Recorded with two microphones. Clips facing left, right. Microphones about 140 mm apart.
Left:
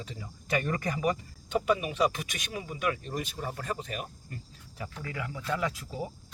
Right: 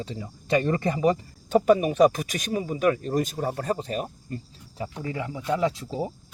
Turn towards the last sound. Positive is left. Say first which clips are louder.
# right 7 dB
turn(degrees=-30)  # may be behind; listen again after turning